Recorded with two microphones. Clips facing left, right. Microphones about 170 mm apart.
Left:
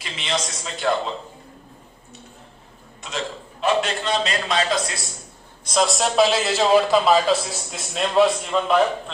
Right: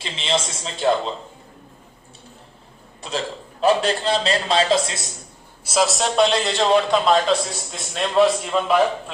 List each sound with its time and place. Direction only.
0.0 s a man's voice: 25° right (ahead or behind)
3.0 s a man's voice: 35° right (ahead or behind)
5.6 s a man's voice: 5° right (ahead or behind)